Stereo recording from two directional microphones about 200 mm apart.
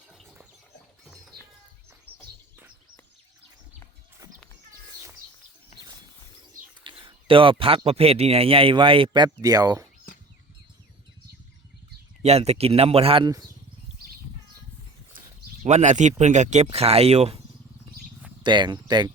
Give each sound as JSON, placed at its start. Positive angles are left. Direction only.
{"t": 1.0, "sound": "music", "side_deg": 0}
{"t": 6.8, "sound": "speech", "side_deg": -25}
{"t": 12.2, "sound": "speech", "side_deg": -30}
{"t": 15.6, "sound": "speech", "side_deg": -35}
{"t": 18.4, "sound": "speech", "side_deg": -20}